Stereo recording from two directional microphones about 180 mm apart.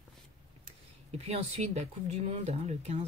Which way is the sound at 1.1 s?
35° right (ahead or behind).